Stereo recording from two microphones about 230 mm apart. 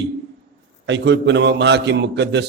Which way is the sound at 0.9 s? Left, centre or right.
Right.